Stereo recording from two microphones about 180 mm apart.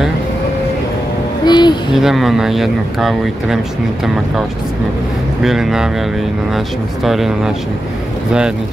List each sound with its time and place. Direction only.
1.4 s speech: 25° left (ahead or behind)
2.0 s speech: centre (ahead or behind)
5.4 s speech: centre (ahead or behind)
7.1 s speech: centre (ahead or behind)